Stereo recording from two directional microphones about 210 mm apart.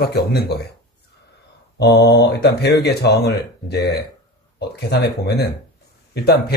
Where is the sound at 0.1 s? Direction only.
50° left (ahead or behind).